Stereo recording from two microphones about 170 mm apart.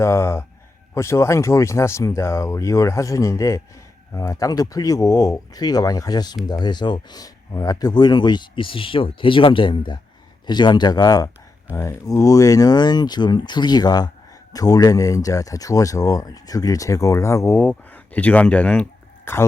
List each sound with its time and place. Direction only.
0.0 s speech: 15° left (ahead or behind)